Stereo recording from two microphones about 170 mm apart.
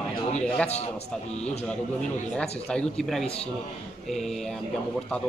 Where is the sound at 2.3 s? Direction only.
5° left (ahead or behind).